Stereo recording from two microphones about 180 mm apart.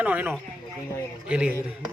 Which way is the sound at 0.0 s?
10° right (ahead or behind).